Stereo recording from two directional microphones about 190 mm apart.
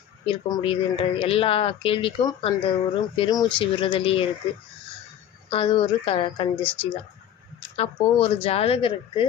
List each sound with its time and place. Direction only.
0.3 s speech: 30° left (ahead or behind)
5.5 s a woman's voice: 30° left (ahead or behind)